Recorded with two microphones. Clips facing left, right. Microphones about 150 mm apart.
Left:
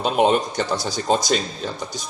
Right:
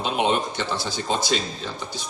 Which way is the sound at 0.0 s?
45° left (ahead or behind).